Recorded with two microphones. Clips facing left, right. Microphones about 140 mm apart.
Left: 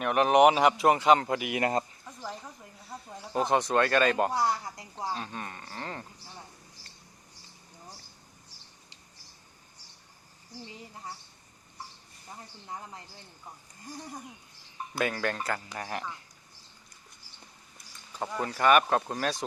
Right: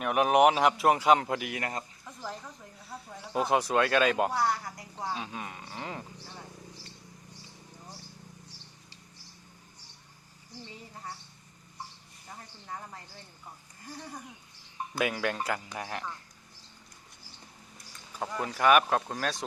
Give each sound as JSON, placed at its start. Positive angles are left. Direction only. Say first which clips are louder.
{"t": 0.0, "sound": "speech", "louder": "left 2 dB", "side_deg": -5}
{"t": 1.5, "sound": "speech", "louder": "left 7 dB", "side_deg": 20}
{"t": 3.3, "sound": "speech", "louder": "left 1 dB", "side_deg": -5}
{"t": 4.3, "sound": "speech", "louder": "left 1 dB", "side_deg": 20}
{"t": 5.1, "sound": "speech", "louder": "even", "side_deg": -5}
{"t": 12.6, "sound": "speech", "louder": "even", "side_deg": 15}
{"t": 14.9, "sound": "speech", "louder": "even", "side_deg": -5}
{"t": 15.9, "sound": "speech", "louder": "left 3 dB", "side_deg": 5}
{"t": 18.2, "sound": "speech", "louder": "even", "side_deg": 0}